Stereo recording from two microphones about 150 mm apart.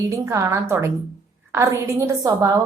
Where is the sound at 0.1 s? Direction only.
20° right (ahead or behind).